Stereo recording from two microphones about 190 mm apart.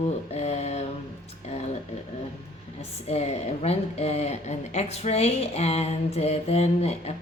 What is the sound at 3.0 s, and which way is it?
A woman's voice, 35° left (ahead or behind).